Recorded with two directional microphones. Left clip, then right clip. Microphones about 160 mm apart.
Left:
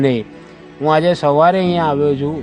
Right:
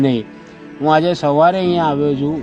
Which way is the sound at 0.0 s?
15° left (ahead or behind).